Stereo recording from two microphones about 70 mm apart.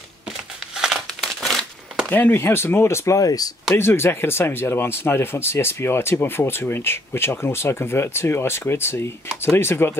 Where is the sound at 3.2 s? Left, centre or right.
Left.